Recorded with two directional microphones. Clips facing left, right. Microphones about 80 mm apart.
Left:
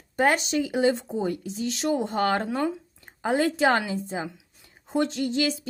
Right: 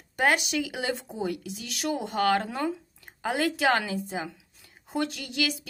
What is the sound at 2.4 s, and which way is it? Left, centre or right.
Speech, centre.